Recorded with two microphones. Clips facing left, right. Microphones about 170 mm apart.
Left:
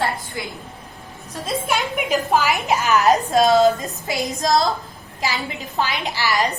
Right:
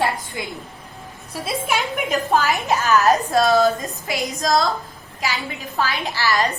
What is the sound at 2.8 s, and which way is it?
A woman's voice, 15° left (ahead or behind).